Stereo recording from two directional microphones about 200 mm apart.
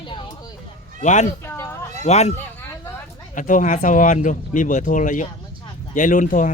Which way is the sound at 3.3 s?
40° left (ahead or behind).